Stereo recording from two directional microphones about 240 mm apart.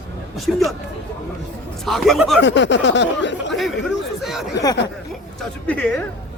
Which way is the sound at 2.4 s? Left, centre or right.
Left.